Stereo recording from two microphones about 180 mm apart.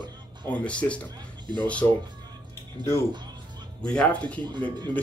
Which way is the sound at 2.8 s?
25° right (ahead or behind).